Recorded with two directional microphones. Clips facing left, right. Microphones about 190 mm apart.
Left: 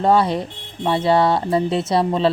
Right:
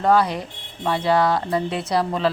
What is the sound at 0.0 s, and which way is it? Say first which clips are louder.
A woman's voice: left 2 dB; 25° left (ahead or behind).